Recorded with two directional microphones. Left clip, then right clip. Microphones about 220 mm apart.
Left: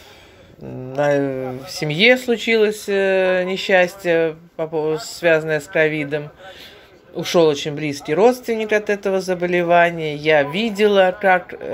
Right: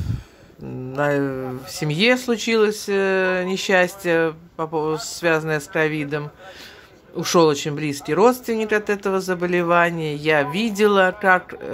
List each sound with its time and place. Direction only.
0.9 s speech: 10° right (ahead or behind)
7.6 s speech: 15° right (ahead or behind)